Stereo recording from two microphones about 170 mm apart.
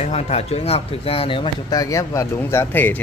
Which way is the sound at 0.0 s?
40° left (ahead or behind).